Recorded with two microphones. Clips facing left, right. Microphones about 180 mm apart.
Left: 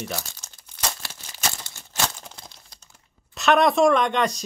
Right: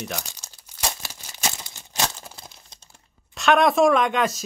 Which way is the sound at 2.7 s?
30° right (ahead or behind).